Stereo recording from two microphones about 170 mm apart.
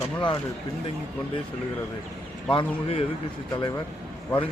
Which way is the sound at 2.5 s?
30° left (ahead or behind).